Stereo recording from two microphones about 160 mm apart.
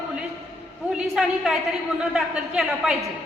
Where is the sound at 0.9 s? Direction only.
Centre (ahead or behind).